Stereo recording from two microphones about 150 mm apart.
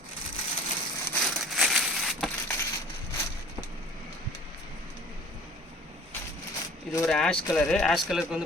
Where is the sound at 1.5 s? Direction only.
Centre (ahead or behind).